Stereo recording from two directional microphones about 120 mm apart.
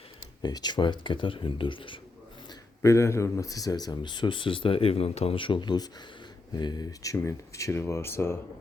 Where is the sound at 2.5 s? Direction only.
25° left (ahead or behind).